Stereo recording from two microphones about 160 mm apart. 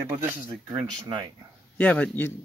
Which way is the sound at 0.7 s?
25° right (ahead or behind).